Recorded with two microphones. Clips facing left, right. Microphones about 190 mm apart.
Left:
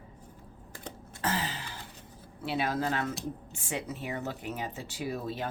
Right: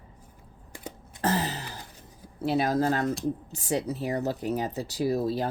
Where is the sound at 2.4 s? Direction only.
40° right (ahead or behind).